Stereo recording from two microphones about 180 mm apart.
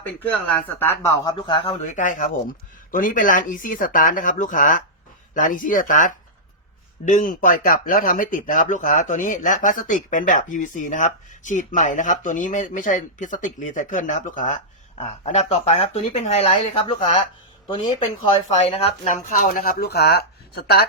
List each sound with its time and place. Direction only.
0.0 s speech: 10° left (ahead or behind)
1.4 s speech: 30° left (ahead or behind)
1.8 s speech: 45° left (ahead or behind); by 20.8 s 60° left (ahead or behind)